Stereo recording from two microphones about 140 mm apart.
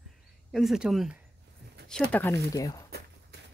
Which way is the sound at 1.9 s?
10° left (ahead or behind).